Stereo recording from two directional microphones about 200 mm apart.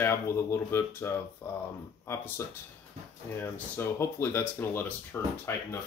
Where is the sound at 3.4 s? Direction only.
10° left (ahead or behind).